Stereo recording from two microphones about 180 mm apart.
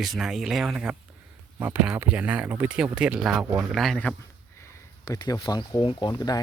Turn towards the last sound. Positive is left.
turn(degrees=20)  # may be behind; listen again after turning